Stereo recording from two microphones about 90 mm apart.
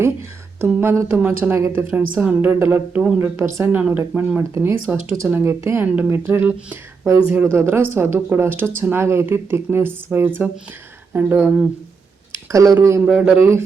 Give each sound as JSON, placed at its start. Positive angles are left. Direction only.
{"t": 0.0, "sound": "a sound", "side_deg": -30}
{"t": 0.8, "sound": "speech", "side_deg": -25}
{"t": 12.5, "sound": "speech", "side_deg": -35}
{"t": 13.1, "sound": "a man's voice", "side_deg": -15}